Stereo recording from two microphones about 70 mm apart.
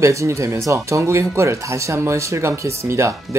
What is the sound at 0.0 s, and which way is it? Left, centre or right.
Speech, right.